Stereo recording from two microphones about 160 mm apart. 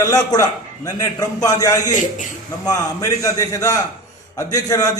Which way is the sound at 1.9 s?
50° left (ahead or behind).